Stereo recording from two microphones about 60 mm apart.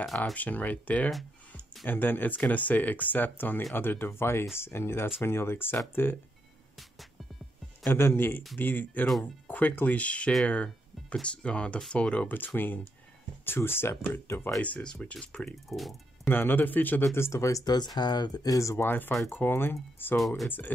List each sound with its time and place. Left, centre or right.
0.2 s speech: left
7.9 s speech: left
10.4 s music: centre
11.1 s speech: centre
12.4 s speech: left
14.8 s speech: centre
15.4 s speech: centre
16.3 s speech: left
17.0 s speech: left
18.4 s speech: left
18.8 s speech: left
20.2 s speech: centre
20.4 s speech: left